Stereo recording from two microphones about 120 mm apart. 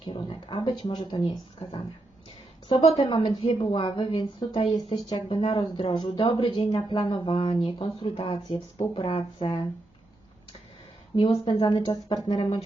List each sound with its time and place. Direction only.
0.0 s speech: 45° left (ahead or behind)
11.1 s speech: 40° left (ahead or behind)